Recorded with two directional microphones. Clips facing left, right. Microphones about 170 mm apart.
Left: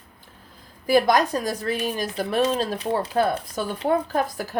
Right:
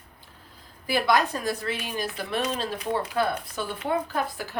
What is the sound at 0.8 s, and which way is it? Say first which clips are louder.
Speech: left 5 dB; 45° left (ahead or behind).